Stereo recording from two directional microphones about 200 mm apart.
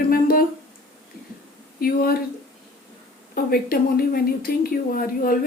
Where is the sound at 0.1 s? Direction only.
45° left (ahead or behind).